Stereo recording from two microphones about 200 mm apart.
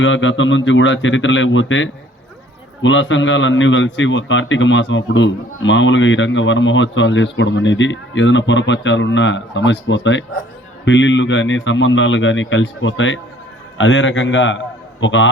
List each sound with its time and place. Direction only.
0.0 s a man's voice: 70° left (ahead or behind)